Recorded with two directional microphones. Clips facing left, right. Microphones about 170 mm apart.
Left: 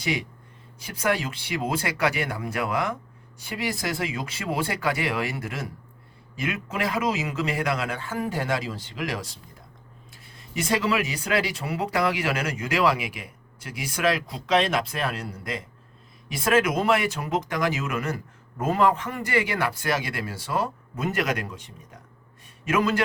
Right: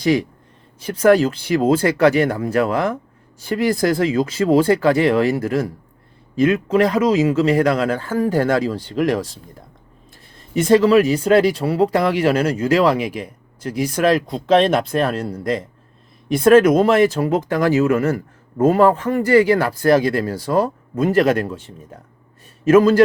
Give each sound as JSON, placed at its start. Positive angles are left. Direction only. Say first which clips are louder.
{"t": 1.0, "sound": "speech", "louder": "right 13 dB", "side_deg": -40}
{"t": 4.2, "sound": "speech", "louder": "right 13 dB", "side_deg": -30}
{"t": 10.6, "sound": "speech", "louder": "right 12 dB", "side_deg": -40}
{"t": 16.4, "sound": "speech", "louder": "right 11 dB", "side_deg": -50}